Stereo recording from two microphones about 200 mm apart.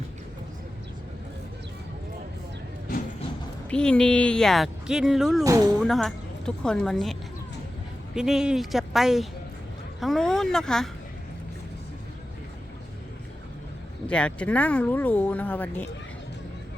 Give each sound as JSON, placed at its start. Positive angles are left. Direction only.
{"t": 3.7, "sound": "speech", "side_deg": 5}
{"t": 5.4, "sound": "speech", "side_deg": -15}
{"t": 5.8, "sound": "speech", "side_deg": 0}
{"t": 14.1, "sound": "speech", "side_deg": 5}